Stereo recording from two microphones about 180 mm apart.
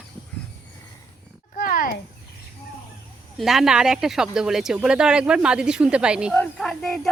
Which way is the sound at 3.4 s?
Centre (ahead or behind).